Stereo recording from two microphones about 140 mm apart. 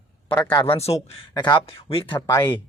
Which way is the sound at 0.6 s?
45° left (ahead or behind).